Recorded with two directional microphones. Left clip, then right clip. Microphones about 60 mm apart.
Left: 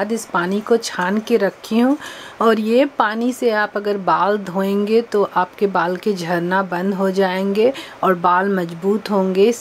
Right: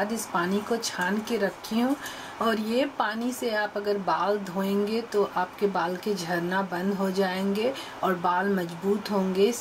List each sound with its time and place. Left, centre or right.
0.0 s a woman's voice: left